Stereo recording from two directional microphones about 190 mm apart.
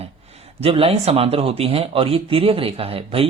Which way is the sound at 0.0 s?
35° right (ahead or behind).